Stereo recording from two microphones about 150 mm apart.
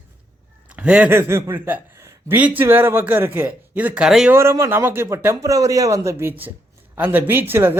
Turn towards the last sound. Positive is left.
turn(degrees=-15)  # may be behind; listen again after turning